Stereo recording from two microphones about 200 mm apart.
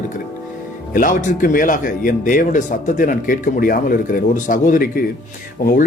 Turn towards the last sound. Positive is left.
turn(degrees=40)  # may be behind; listen again after turning